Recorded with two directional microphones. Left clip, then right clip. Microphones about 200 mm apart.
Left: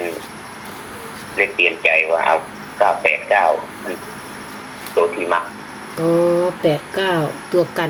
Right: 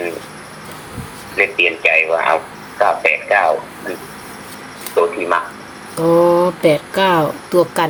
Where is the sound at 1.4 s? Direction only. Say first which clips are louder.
Right 2 dB; 15° right (ahead or behind).